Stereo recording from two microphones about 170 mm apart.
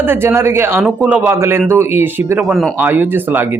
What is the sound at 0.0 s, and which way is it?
Speech, 15° right (ahead or behind).